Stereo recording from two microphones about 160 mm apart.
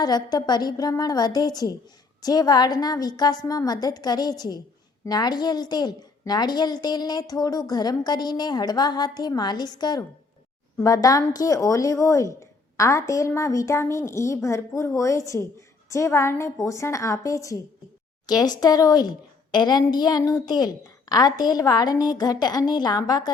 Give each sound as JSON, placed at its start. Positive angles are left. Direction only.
{"t": 0.0, "sound": "a woman's voice", "side_deg": 25}